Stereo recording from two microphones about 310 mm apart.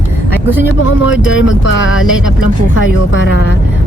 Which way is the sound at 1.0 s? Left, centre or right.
Left.